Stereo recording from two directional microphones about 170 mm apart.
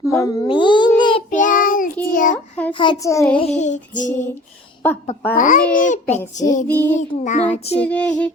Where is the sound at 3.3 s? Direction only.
40° left (ahead or behind).